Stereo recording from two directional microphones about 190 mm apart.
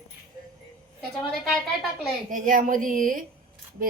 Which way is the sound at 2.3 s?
45° right (ahead or behind).